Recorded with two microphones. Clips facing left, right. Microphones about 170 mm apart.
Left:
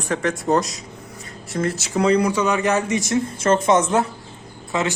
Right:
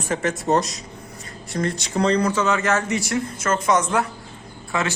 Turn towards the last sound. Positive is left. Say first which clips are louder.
# left 2 dB
turn(degrees=20)  # may be behind; listen again after turning